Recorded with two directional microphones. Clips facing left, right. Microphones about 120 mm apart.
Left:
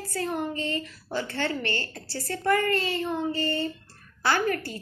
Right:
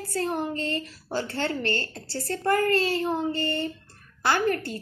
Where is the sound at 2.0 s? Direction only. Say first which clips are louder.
Right 1 dB; 25° right (ahead or behind).